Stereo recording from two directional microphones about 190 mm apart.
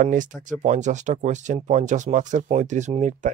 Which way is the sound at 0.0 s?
45° right (ahead or behind).